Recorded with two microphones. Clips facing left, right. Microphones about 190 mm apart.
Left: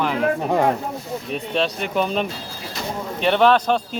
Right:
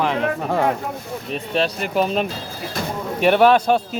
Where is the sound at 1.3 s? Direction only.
Centre (ahead or behind).